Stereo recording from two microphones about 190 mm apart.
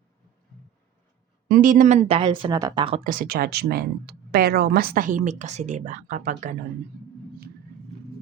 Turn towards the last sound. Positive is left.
turn(degrees=-45)  # may be behind; listen again after turning